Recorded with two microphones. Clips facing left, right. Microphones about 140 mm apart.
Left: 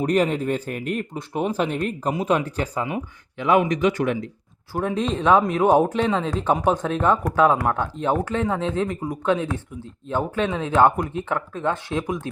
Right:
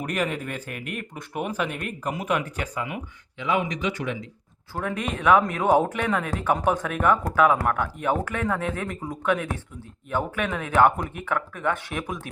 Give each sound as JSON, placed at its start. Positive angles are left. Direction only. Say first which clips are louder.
{"t": 0.0, "sound": "speech", "louder": "left 7 dB", "side_deg": 30}
{"t": 3.3, "sound": "speech", "louder": "left 7 dB", "side_deg": 45}
{"t": 4.7, "sound": "speech", "louder": "left 5 dB", "side_deg": 20}